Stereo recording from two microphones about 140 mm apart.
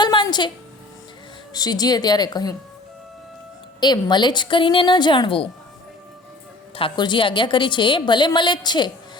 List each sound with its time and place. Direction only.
0.0 s a sound: 30° left (ahead or behind)
1.5 s speech: 30° left (ahead or behind)
3.8 s a woman's voice: 30° left (ahead or behind)
6.7 s a woman's voice: 35° left (ahead or behind)